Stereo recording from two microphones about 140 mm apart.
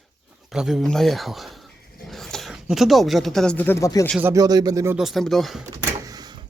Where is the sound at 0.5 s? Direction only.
5° right (ahead or behind); by 4.0 s 25° left (ahead or behind).